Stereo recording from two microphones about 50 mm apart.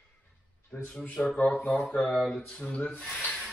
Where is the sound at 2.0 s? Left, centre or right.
Centre.